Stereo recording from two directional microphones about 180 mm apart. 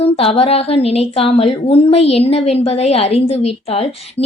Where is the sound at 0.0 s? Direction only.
35° left (ahead or behind).